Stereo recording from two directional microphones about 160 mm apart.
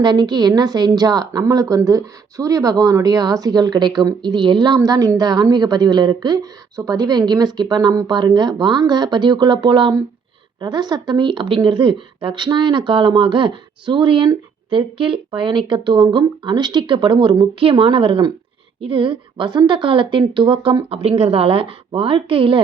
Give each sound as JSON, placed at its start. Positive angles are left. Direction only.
{"t": 0.0, "sound": "a woman's voice", "side_deg": -25}